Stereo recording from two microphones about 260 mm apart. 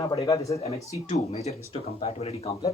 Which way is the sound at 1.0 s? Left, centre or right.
Left.